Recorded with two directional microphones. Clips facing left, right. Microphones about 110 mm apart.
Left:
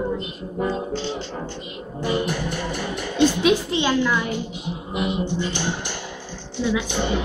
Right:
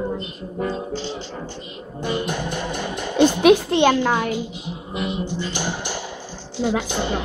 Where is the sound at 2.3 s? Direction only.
20° right (ahead or behind).